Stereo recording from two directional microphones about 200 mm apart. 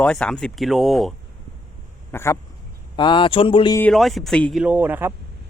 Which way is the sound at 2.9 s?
25° left (ahead or behind).